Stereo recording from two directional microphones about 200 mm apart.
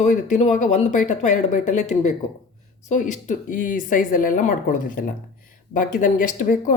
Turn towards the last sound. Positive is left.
turn(degrees=40)  # may be behind; listen again after turning